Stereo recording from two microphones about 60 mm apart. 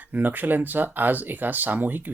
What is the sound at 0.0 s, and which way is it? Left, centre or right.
Speech, right.